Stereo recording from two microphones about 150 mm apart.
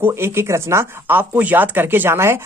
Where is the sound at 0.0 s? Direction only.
15° right (ahead or behind).